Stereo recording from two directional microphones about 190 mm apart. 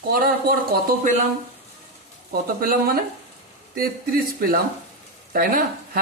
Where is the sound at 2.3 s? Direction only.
50° right (ahead or behind).